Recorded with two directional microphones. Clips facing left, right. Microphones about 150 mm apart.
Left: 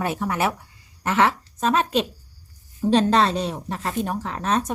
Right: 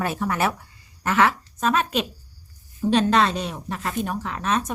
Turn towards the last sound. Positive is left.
turn(degrees=35)  # may be behind; listen again after turning